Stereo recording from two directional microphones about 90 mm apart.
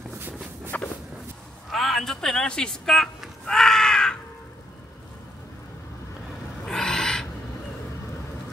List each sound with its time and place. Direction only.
0.7 s walk: 20° left (ahead or behind)
1.7 s a sound: 5° left (ahead or behind)
6.6 s owl: 5° left (ahead or behind)